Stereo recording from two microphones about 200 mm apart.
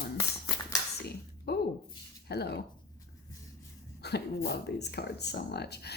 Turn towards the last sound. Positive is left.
turn(degrees=55)  # may be behind; listen again after turning